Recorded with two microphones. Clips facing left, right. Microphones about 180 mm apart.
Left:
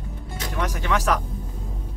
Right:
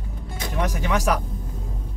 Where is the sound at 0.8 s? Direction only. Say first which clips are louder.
Even; 15° right (ahead or behind).